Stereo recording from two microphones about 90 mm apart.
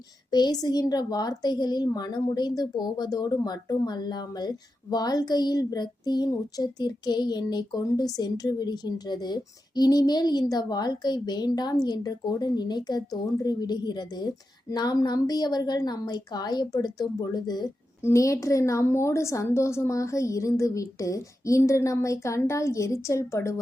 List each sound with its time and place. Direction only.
0.3 s a woman's voice: 50° left (ahead or behind)
18.0 s a woman's voice: 35° left (ahead or behind)